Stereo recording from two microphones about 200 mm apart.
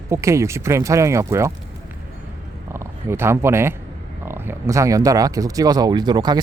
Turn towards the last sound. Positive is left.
turn(degrees=-20)  # may be behind; listen again after turning